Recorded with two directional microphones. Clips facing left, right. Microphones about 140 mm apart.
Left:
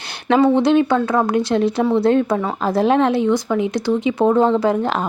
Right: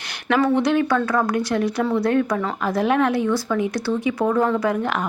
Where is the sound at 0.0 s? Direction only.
30° left (ahead or behind).